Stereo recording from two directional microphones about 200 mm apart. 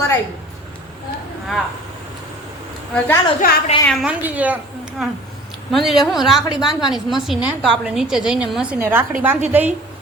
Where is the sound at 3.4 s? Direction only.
45° left (ahead or behind).